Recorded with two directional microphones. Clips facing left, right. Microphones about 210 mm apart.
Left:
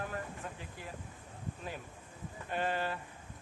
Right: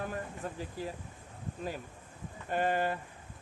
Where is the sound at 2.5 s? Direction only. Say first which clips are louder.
Right 5 dB; 45° right (ahead or behind).